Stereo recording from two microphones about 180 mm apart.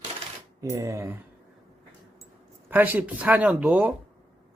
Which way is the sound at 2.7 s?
10° right (ahead or behind).